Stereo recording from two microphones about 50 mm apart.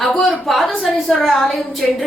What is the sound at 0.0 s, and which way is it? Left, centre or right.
A woman's voice, centre.